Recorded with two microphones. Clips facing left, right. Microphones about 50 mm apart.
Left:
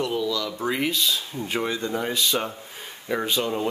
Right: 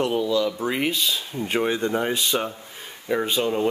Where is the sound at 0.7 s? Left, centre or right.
Centre.